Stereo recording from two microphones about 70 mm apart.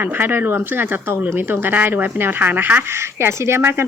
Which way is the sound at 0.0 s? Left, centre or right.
Right.